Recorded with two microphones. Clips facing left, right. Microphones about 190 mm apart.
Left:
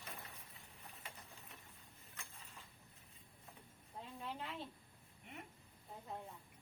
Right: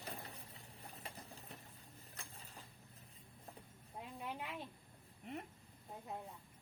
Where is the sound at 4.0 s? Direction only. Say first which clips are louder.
Right 1 dB; 15° right (ahead or behind).